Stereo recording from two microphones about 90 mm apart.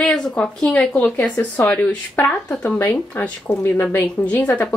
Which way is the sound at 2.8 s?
25° left (ahead or behind).